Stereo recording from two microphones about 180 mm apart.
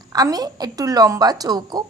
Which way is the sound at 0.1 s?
20° right (ahead or behind).